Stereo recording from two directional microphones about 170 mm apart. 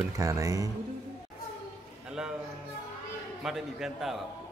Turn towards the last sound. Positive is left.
turn(degrees=0)  # may be behind; listen again after turning